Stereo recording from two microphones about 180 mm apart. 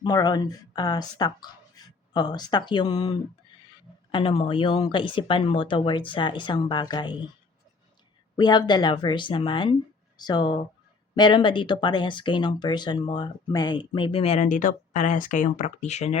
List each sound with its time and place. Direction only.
0.0 s speech: 20° left (ahead or behind)
8.4 s speech: 25° left (ahead or behind); by 16.1 s 40° left (ahead or behind)